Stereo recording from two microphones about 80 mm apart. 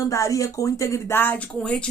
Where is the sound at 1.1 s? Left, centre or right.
Left.